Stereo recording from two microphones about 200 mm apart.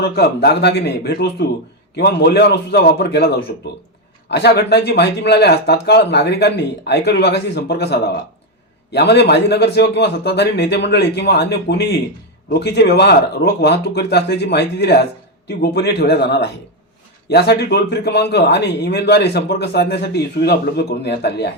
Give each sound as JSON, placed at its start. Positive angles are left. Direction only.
{"t": 0.0, "sound": "a man's voice", "side_deg": 55}